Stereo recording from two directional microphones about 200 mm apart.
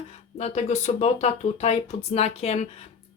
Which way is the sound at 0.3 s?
35° left (ahead or behind).